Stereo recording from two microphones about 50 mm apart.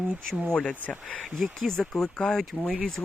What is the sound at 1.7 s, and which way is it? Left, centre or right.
Speech, centre.